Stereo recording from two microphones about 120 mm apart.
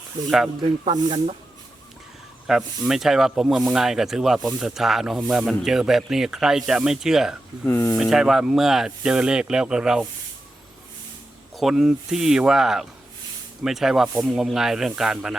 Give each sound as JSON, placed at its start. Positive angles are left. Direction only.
{"t": 0.3, "sound": "speech", "side_deg": -5}
{"t": 2.5, "sound": "speech", "side_deg": -5}
{"t": 7.6, "sound": "speech", "side_deg": 20}
{"t": 7.9, "sound": "speech", "side_deg": -5}
{"t": 11.5, "sound": "speech", "side_deg": -5}